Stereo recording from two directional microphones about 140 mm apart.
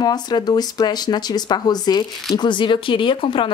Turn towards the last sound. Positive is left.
turn(degrees=35)  # may be behind; listen again after turning